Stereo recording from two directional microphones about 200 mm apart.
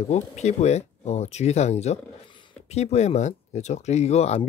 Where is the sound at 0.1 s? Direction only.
35° left (ahead or behind).